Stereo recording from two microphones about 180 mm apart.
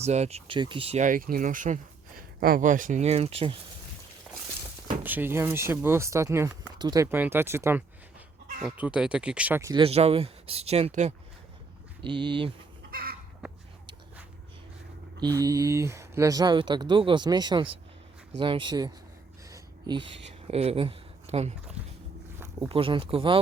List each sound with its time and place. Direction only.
0.0 s speech: 35° right (ahead or behind)
5.0 s speech: 10° right (ahead or behind)
9.7 s speech: 35° right (ahead or behind)
12.0 s speech: 25° right (ahead or behind)
12.9 s chicken: 55° right (ahead or behind)
15.2 s speech: 20° right (ahead or behind)
19.5 s a sound: 20° right (ahead or behind)
20.2 s speech: 35° right (ahead or behind)
22.7 s speech: 30° right (ahead or behind)